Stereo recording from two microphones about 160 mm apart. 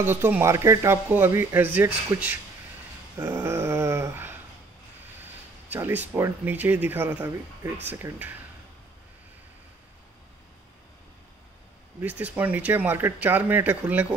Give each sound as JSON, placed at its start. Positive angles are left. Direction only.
{"t": 0.0, "sound": "speech", "side_deg": -15}
{"t": 3.2, "sound": "dog", "side_deg": -15}
{"t": 5.2, "sound": "speech", "side_deg": -15}
{"t": 12.0, "sound": "speech", "side_deg": -10}